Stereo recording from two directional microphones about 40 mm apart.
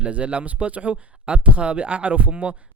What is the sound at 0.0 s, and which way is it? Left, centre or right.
Speech, right.